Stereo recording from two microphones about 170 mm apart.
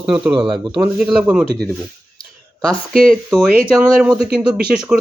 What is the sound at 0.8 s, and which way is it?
Speech, 5° right (ahead or behind).